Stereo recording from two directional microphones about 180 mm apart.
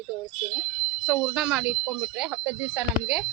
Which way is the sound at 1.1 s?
5° right (ahead or behind).